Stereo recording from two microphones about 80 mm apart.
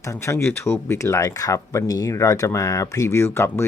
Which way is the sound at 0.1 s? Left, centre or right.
Left.